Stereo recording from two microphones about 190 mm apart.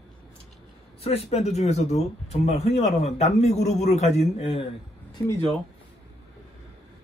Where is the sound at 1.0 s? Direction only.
30° left (ahead or behind).